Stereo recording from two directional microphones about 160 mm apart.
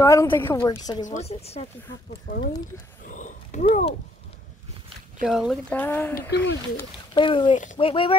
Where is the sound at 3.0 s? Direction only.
55° left (ahead or behind).